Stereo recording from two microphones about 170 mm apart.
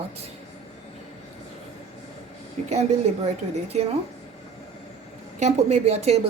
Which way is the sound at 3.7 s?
40° right (ahead or behind).